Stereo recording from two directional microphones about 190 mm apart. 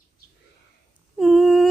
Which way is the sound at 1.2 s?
Centre (ahead or behind).